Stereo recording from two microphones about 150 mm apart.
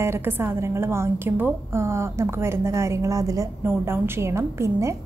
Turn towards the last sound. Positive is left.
turn(degrees=-20)  # may be behind; listen again after turning